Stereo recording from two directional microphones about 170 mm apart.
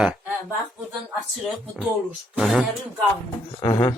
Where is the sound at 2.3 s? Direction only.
5° right (ahead or behind).